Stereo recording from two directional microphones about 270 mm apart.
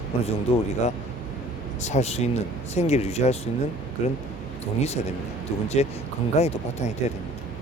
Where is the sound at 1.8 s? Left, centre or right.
Left.